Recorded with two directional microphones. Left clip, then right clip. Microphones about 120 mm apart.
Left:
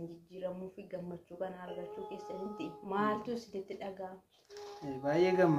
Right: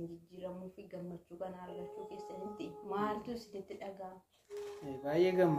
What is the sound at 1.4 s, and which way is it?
Speech, 20° left (ahead or behind).